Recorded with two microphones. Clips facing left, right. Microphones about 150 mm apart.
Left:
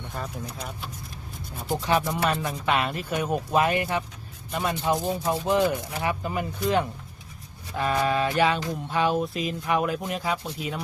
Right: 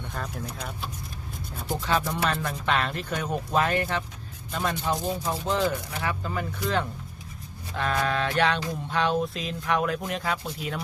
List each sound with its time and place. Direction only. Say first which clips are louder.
0.1 s speech: left 1 dB; 5° left (ahead or behind)
1.7 s speech: left 2 dB; 15° left (ahead or behind)
2.1 s speech: left 2 dB; 5° left (ahead or behind)
7.8 s a sound: left 2 dB; 5° left (ahead or behind)